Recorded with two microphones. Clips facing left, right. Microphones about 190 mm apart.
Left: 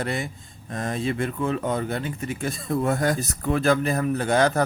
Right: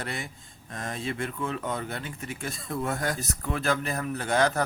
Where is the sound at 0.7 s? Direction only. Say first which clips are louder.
Left 7 dB; 35° left (ahead or behind).